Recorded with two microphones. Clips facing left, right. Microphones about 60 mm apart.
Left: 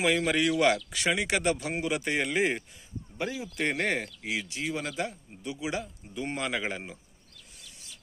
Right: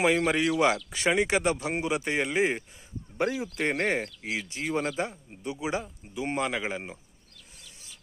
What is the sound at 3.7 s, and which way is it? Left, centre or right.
Speech, centre.